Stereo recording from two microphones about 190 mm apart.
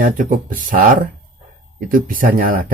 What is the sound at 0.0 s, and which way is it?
Speech, 45° right (ahead or behind).